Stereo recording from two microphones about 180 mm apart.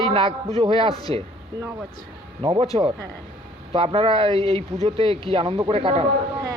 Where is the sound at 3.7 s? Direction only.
30° right (ahead or behind).